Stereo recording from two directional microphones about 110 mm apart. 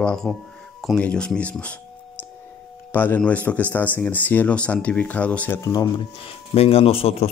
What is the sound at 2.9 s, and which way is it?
Speech, 15° left (ahead or behind).